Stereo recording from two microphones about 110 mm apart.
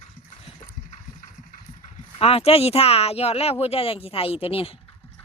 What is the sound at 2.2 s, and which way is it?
Speech, 65° left (ahead or behind).